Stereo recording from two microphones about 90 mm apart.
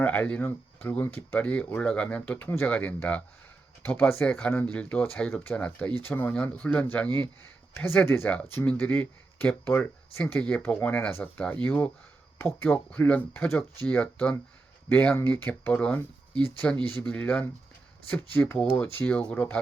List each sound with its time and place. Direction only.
0.0 s speech: 15° left (ahead or behind)
5.3 s speech: 25° left (ahead or behind)
17.1 s speech: 10° left (ahead or behind)
18.7 s speech: 20° left (ahead or behind)